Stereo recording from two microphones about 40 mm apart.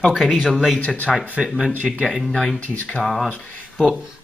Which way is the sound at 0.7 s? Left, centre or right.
Left.